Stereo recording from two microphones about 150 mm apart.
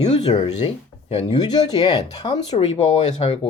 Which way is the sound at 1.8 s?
30° left (ahead or behind).